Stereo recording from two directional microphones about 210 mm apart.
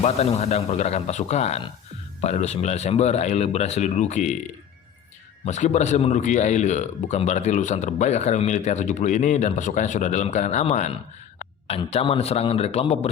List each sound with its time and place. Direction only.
0.0 s a man's voice: 30° left (ahead or behind)
5.5 s a man's voice: 35° left (ahead or behind)